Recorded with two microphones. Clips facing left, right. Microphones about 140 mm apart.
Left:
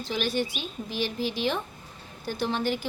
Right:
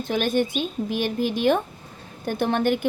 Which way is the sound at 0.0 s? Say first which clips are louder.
Right 6 dB; 50° right (ahead or behind).